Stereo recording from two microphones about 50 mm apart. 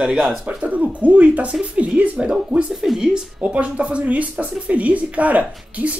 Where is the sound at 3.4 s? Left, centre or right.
Right.